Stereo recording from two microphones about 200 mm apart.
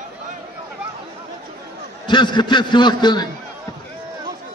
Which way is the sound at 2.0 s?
20° left (ahead or behind).